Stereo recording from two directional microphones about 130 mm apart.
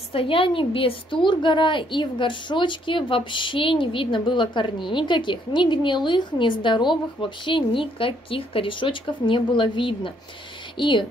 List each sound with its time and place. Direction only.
0.1 s a woman's voice: 45° left (ahead or behind)